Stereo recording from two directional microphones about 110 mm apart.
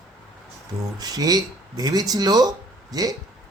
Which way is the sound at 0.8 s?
35° right (ahead or behind).